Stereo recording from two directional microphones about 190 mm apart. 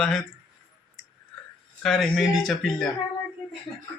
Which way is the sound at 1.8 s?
Centre (ahead or behind).